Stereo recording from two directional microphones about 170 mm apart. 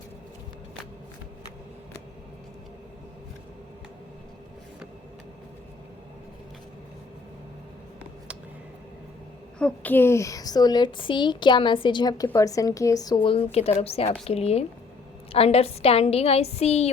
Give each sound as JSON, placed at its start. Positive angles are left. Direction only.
{"t": 9.6, "sound": "a woman's voice", "side_deg": 10}